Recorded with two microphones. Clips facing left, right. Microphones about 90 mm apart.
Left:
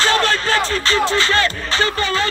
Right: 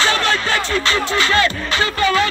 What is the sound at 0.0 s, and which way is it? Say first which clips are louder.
Music: left 1 dB; 40° left (ahead or behind).